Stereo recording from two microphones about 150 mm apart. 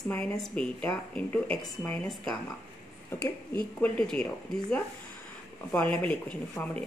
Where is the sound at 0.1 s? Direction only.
10° left (ahead or behind).